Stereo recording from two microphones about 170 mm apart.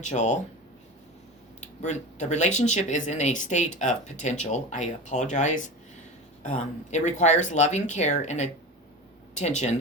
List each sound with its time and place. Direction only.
0.0 s speech: 45° left (ahead or behind)
1.6 s speech: 45° left (ahead or behind)